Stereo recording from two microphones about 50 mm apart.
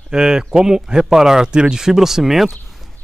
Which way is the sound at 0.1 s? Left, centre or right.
Centre.